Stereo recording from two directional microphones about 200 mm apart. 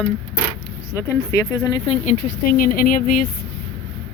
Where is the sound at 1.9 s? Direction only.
40° left (ahead or behind).